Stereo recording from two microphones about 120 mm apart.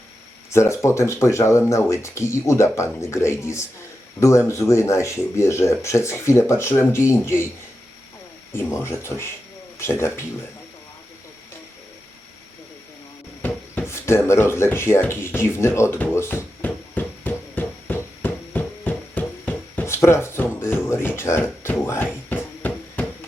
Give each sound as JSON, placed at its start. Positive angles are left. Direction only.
{"t": 0.5, "sound": "speech", "side_deg": 25}
{"t": 8.5, "sound": "speech", "side_deg": 20}
{"t": 13.4, "sound": "speech", "side_deg": 15}
{"t": 15.5, "sound": "a sound", "side_deg": 20}